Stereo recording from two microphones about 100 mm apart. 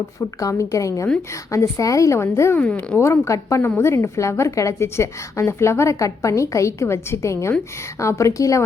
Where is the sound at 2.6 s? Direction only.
15° left (ahead or behind).